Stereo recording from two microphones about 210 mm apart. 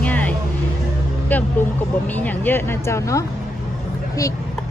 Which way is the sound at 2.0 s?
10° left (ahead or behind).